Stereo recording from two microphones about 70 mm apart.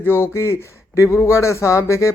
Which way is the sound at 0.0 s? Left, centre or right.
Left.